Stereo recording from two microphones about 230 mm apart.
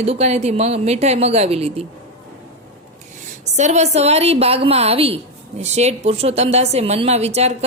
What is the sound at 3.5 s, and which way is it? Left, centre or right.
A woman's voice, right.